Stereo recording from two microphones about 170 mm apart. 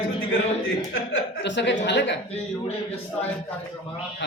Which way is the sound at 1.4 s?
90° left.